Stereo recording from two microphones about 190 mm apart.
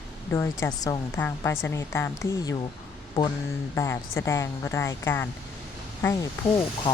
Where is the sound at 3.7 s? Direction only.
15° left (ahead or behind).